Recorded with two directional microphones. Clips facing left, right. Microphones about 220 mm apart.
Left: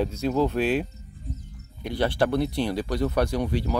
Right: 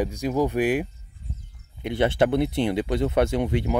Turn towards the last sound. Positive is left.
turn(degrees=-20)  # may be behind; listen again after turning